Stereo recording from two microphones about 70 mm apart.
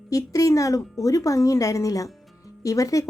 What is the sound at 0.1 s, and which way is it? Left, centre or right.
Speech, left.